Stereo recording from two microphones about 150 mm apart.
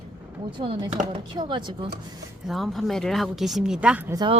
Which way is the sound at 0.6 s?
35° right (ahead or behind).